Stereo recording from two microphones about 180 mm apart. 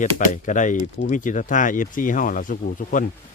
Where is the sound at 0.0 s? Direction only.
45° left (ahead or behind).